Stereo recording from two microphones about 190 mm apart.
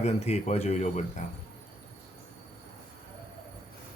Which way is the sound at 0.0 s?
35° left (ahead or behind).